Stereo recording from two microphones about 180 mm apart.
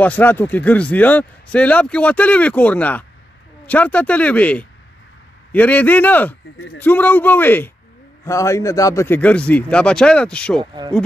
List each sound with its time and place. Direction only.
0.0 s speech: 10° left (ahead or behind)
10.6 s speech: 25° right (ahead or behind)